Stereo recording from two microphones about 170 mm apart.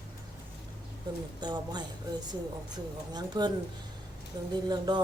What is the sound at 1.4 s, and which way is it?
Speech, 25° right (ahead or behind).